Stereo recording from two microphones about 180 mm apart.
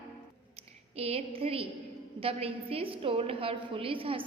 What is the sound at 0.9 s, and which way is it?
A woman's voice, 35° right (ahead or behind).